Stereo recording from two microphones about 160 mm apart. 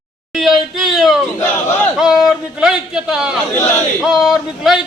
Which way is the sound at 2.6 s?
5° right (ahead or behind).